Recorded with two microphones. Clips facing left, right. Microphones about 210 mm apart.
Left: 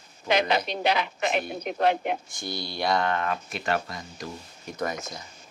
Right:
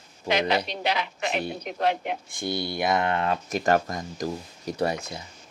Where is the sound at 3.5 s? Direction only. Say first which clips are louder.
Right 6 dB; 45° right (ahead or behind).